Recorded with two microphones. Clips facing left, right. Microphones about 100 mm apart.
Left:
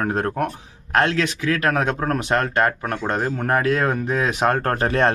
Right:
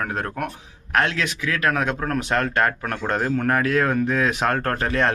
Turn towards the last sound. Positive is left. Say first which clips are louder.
# left 3 dB
turn(degrees=35)  # may be behind; listen again after turning